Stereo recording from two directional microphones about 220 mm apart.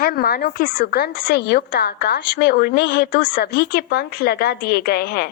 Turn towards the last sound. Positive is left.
turn(degrees=45)  # may be behind; listen again after turning